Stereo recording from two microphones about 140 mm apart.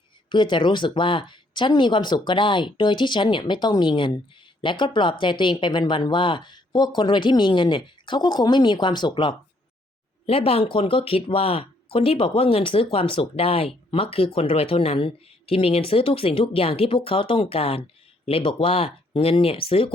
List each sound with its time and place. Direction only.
0.3 s speech: 35° left (ahead or behind)
10.2 s speech: 45° left (ahead or behind)